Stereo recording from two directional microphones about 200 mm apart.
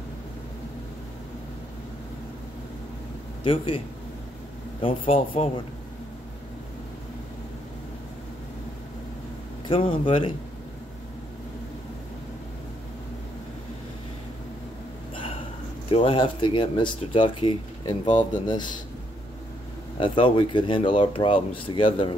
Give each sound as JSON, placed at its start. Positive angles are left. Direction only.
{"t": 3.4, "sound": "speech", "side_deg": 25}
{"t": 4.8, "sound": "speech", "side_deg": 25}
{"t": 9.7, "sound": "speech", "side_deg": 25}
{"t": 15.9, "sound": "speech", "side_deg": 25}
{"t": 20.0, "sound": "speech", "side_deg": 25}